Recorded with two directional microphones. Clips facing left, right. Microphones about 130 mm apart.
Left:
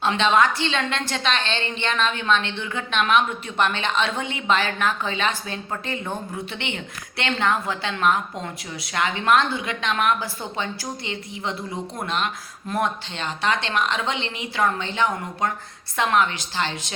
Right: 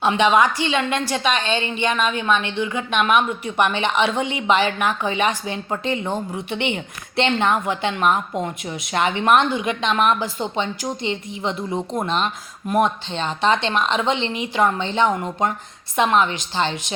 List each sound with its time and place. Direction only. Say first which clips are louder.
0.0 s a woman's voice: right 3 dB; 15° right (ahead or behind)